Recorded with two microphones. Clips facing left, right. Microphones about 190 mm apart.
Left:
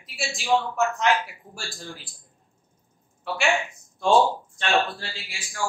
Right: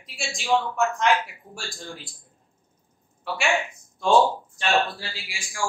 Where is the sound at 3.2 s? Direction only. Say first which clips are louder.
Left 1 dB; centre (ahead or behind).